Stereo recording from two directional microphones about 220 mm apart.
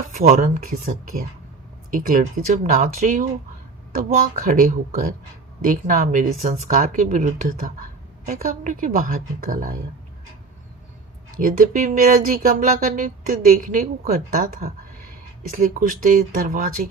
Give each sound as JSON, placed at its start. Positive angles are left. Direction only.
{"t": 0.1, "sound": "speech", "side_deg": -35}
{"t": 11.3, "sound": "speech", "side_deg": -40}